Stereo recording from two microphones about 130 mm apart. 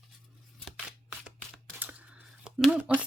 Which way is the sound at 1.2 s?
10° right (ahead or behind).